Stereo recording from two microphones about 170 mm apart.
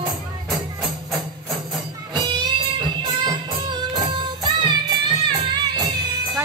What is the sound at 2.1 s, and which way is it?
Music, 25° right (ahead or behind).